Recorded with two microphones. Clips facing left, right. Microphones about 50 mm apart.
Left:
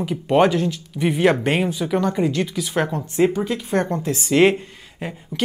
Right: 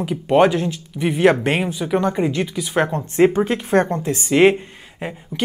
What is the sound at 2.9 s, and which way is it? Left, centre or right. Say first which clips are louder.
Speech: right 5 dB; right.